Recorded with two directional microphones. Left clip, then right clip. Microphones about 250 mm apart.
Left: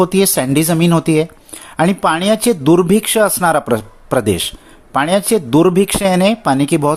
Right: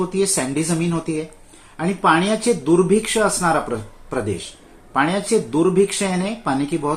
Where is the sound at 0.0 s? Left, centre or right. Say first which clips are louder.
Left 7 dB; left.